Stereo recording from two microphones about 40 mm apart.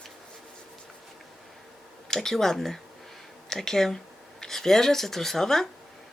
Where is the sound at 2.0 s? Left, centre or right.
Centre.